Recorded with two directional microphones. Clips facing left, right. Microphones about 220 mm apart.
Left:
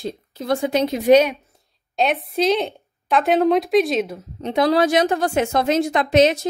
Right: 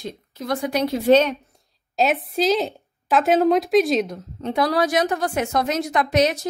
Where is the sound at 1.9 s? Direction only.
Centre (ahead or behind).